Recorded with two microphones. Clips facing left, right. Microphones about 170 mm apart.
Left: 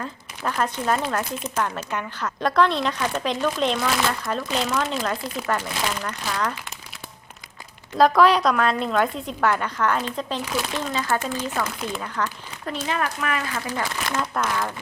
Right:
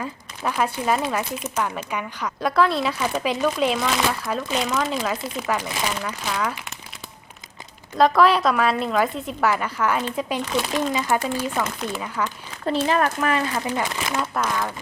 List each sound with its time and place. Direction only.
0.0 s speech: 5° right (ahead or behind)
7.9 s speech: centre (ahead or behind)
12.9 s speech: 35° right (ahead or behind)
14.0 s speech: 5° right (ahead or behind)